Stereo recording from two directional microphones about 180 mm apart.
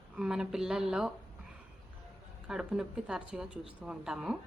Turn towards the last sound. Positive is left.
turn(degrees=-5)  # may be behind; listen again after turning